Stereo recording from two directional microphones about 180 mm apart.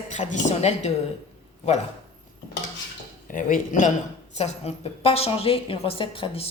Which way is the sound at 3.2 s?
45° left (ahead or behind).